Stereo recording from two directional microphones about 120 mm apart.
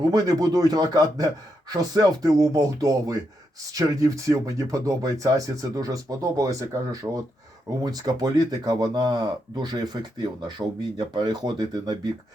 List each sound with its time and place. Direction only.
0.1 s speech: 30° right (ahead or behind)